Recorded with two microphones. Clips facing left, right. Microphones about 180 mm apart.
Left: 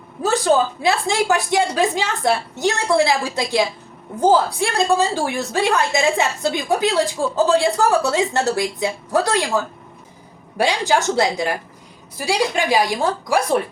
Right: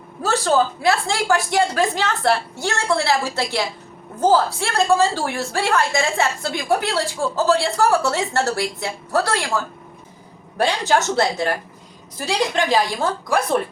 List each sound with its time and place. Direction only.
0.2 s a woman's voice: 15° left (ahead or behind)
4.6 s a woman's voice: 15° left (ahead or behind)
10.6 s a woman's voice: 15° left (ahead or behind)